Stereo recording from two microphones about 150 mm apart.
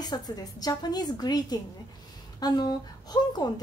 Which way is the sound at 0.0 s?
25° left (ahead or behind).